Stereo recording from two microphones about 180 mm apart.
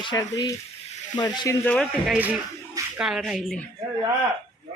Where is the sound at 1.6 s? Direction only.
5° left (ahead or behind).